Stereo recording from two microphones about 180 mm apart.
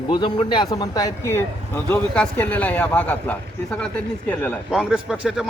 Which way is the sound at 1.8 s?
5° left (ahead or behind).